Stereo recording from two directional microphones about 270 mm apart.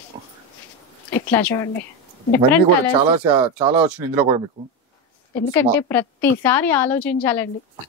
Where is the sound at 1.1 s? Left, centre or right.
Centre.